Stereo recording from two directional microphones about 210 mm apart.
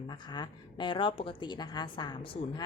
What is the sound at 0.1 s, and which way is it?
A woman's voice, 20° left (ahead or behind).